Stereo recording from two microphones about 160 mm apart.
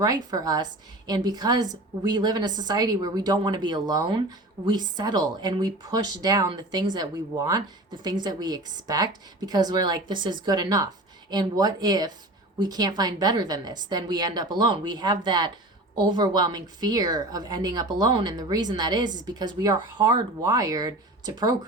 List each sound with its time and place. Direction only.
0.0 s speech: 25° right (ahead or behind)